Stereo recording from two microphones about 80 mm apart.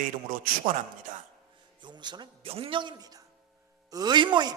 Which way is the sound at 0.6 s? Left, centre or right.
Right.